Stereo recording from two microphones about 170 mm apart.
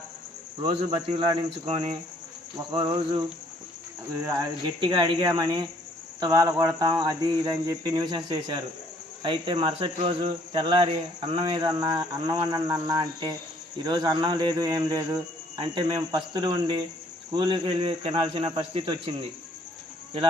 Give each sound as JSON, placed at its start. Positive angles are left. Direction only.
{"t": 0.6, "sound": "speech", "side_deg": -30}
{"t": 2.7, "sound": "speech", "side_deg": -25}